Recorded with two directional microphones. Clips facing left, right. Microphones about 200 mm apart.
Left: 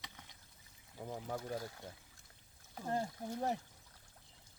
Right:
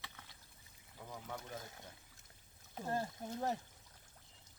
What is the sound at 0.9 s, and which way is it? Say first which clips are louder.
Speech: left 5 dB; 45° left (ahead or behind).